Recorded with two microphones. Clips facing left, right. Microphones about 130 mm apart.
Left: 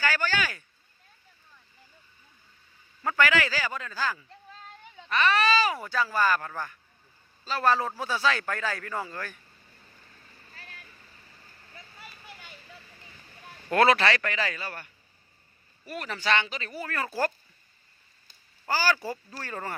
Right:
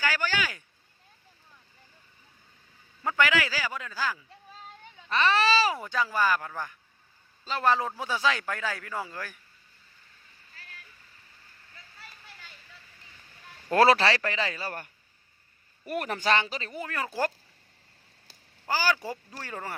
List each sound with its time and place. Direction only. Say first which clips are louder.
0.0 s a sound: left 1 dB; 15° right (ahead or behind)
3.0 s a man's voice: left 1 dB; 15° right (ahead or behind)
5.0 s speech: even; 30° right (ahead or behind)
5.8 s a man's voice: left 1 dB; 15° right (ahead or behind)
10.5 s vehicle: left 2 dB; 35° left (ahead or behind)
11.7 s vehicle: left 3 dB; 15° left (ahead or behind)
13.7 s a man's voice: right 1 dB; 30° right (ahead or behind)
15.9 s speech: right 2 dB; 55° right (ahead or behind); by 16.7 s 35° right (ahead or behind)
16.7 s a man's voice: left 1 dB; 15° right (ahead or behind)
18.3 s a sound: right 5 dB; 90° right
18.7 s a man's voice: left 1 dB; 15° right (ahead or behind)